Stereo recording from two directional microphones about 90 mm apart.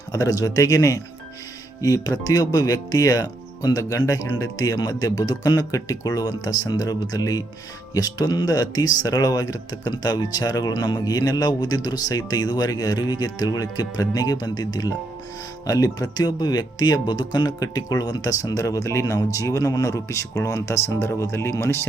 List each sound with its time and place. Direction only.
0.1 s speech: 40° left (ahead or behind)